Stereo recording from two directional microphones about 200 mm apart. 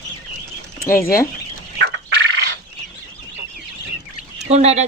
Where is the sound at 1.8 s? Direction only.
60° right (ahead or behind).